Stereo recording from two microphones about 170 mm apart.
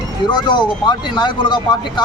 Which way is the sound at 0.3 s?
25° left (ahead or behind).